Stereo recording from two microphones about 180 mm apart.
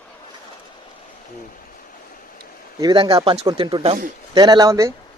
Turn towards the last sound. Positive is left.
turn(degrees=-15)  # may be behind; listen again after turning